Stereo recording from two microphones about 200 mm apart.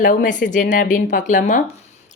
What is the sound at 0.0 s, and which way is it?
Speech, 40° left (ahead or behind).